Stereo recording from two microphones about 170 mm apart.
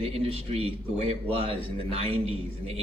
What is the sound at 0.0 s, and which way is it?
A man's voice, 35° right (ahead or behind).